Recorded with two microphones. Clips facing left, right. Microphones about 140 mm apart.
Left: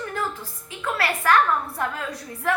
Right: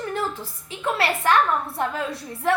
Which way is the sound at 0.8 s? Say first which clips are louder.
Right 2 dB; 25° right (ahead or behind).